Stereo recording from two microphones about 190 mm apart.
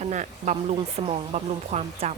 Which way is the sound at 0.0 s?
40° right (ahead or behind).